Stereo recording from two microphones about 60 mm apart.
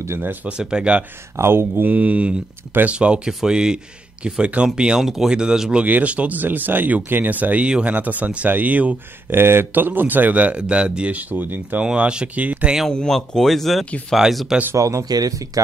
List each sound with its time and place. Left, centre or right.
0.5 s speech: centre
1.3 s speech: right
1.8 s speech: right
5.0 s speech: centre; by 8.9 s right
9.3 s speech: right
11.8 s speech: centre
12.9 s speech: centre
14.8 s speech: right